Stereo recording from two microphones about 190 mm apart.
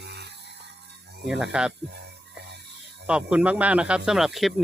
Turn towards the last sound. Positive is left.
turn(degrees=0)  # may be behind; listen again after turning